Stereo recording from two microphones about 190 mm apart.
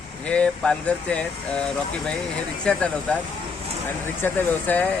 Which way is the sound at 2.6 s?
5° left (ahead or behind).